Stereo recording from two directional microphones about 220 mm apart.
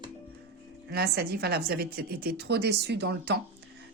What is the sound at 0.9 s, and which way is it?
Speech, 45° right (ahead or behind).